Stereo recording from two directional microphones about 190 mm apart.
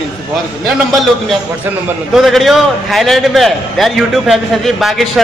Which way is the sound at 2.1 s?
Centre (ahead or behind).